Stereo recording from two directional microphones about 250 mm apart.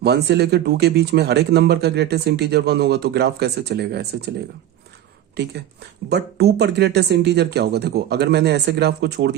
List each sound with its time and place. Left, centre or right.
0.0 s speech: right
6.1 s speech: right